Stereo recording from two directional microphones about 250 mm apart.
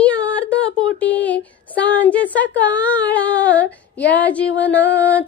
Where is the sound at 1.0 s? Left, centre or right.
Centre.